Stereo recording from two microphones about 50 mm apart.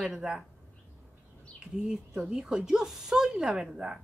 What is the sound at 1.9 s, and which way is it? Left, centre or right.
Speech, centre.